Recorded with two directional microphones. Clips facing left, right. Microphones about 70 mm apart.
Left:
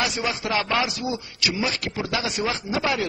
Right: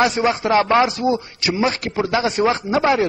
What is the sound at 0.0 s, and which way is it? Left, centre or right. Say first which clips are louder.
A man's voice: right 9 dB; right.